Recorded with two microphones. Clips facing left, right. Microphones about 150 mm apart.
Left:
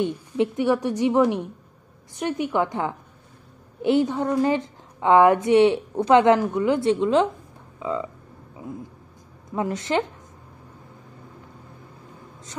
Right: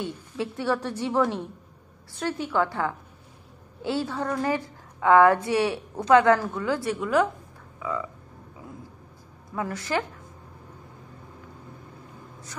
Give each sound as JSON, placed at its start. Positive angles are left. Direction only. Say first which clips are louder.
{"t": 0.0, "sound": "a woman's voice", "louder": "left 8 dB", "side_deg": 20}
{"t": 9.5, "sound": "a woman's voice", "louder": "left 4 dB", "side_deg": 20}